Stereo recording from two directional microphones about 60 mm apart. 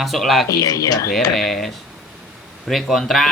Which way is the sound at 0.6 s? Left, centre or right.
Left.